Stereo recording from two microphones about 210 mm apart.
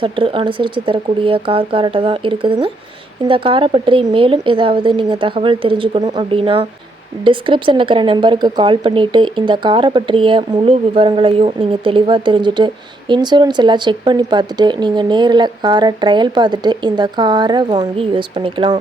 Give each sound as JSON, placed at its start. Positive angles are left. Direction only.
{"t": 0.0, "sound": "speech", "side_deg": -25}